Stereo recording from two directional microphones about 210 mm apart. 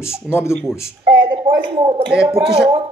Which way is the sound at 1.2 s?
20° right (ahead or behind).